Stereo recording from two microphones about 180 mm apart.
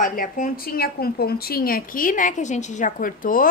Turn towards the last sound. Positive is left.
turn(degrees=50)  # may be behind; listen again after turning